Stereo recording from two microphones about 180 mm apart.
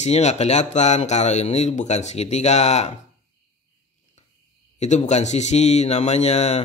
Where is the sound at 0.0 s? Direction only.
40° left (ahead or behind).